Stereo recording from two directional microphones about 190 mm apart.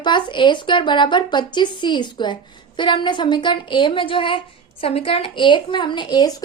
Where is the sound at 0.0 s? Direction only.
25° left (ahead or behind).